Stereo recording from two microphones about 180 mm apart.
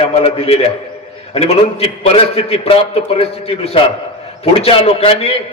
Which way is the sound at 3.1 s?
35° left (ahead or behind).